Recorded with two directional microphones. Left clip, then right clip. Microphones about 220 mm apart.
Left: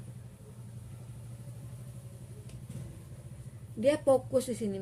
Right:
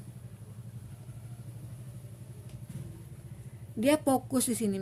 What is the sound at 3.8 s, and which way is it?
A woman's voice, 50° right (ahead or behind).